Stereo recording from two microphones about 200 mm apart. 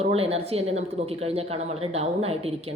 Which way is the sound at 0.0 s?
30° right (ahead or behind).